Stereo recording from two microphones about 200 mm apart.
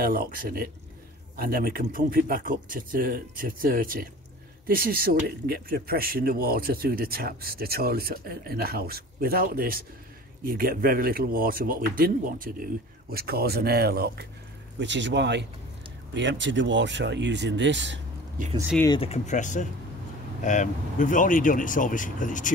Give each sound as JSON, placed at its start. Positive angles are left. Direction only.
{"t": 0.0, "sound": "speech", "side_deg": -45}
{"t": 14.8, "sound": "speech", "side_deg": -60}
{"t": 18.9, "sound": "speech", "side_deg": 35}